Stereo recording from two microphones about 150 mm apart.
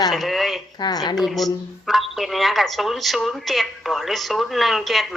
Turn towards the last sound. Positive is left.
turn(degrees=0)  # may be behind; listen again after turning